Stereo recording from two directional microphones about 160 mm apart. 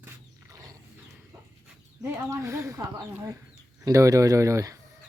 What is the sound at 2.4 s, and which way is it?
Speech, 20° right (ahead or behind).